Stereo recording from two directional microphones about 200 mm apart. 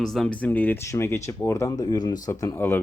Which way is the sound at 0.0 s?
Centre (ahead or behind).